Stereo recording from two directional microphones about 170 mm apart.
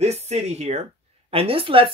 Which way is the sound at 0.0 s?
40° right (ahead or behind).